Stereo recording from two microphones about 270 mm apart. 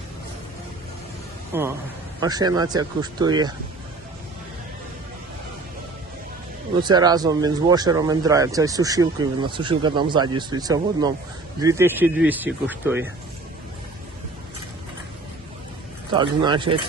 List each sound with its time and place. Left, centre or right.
1.5 s speech: centre
6.8 s speech: centre
16.1 s speech: centre